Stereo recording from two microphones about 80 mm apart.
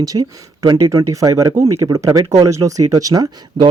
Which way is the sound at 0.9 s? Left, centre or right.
Right.